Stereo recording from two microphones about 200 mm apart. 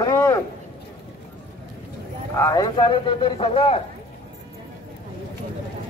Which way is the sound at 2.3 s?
15° left (ahead or behind).